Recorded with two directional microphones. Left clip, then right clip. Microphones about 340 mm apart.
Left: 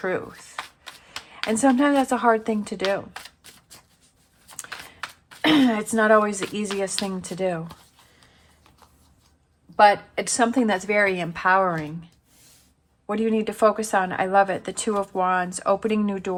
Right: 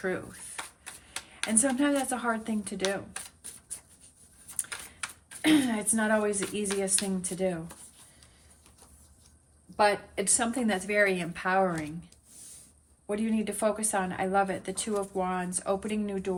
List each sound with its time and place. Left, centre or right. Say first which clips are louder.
0.0 s speech: left 7 dB; centre
1.6 s speech: left 10 dB; centre
5.4 s speech: left 6 dB; centre
9.7 s speech: left 9 dB; centre
13.1 s speech: left 8 dB; centre